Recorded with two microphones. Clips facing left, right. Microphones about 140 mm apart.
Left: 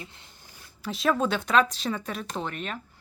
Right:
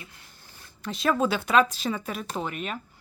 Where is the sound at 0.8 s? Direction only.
Centre (ahead or behind).